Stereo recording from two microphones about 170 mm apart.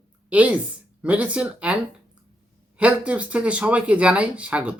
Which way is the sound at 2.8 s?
10° right (ahead or behind).